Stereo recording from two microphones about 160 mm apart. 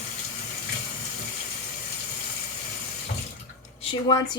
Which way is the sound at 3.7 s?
25° left (ahead or behind).